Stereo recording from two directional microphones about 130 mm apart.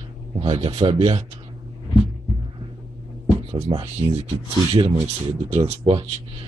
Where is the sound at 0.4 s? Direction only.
50° right (ahead or behind).